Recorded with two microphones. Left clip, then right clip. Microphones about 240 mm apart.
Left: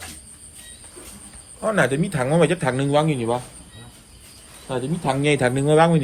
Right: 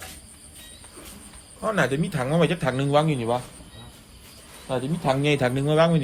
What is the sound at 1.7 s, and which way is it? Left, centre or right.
Speech, centre.